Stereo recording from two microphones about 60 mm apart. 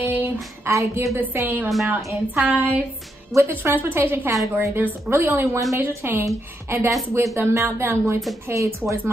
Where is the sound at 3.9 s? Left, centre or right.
Right.